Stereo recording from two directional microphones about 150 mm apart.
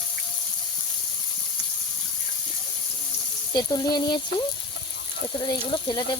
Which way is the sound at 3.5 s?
25° left (ahead or behind).